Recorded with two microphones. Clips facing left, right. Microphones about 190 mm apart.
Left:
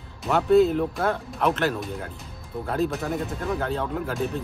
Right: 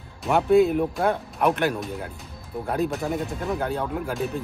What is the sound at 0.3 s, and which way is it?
Speech, 10° right (ahead or behind).